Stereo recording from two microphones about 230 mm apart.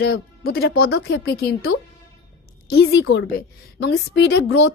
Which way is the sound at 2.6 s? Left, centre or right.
Left.